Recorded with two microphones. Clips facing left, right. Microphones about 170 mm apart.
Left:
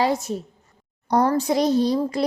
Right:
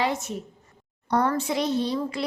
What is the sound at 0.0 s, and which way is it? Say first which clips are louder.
A woman's voice: left 5 dB; 35° left (ahead or behind).